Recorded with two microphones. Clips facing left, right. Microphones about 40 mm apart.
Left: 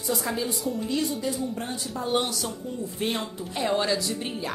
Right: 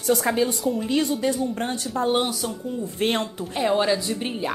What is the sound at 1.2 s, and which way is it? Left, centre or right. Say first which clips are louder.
Speech: right 5 dB; right.